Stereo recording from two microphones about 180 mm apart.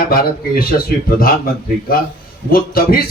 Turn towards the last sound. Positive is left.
turn(degrees=55)  # may be behind; listen again after turning